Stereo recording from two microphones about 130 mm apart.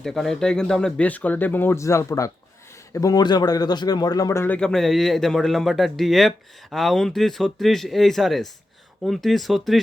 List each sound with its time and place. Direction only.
0.0 s a man's voice: 5° left (ahead or behind)